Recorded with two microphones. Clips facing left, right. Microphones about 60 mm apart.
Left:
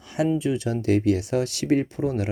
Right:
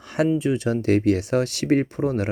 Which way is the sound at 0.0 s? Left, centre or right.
Right.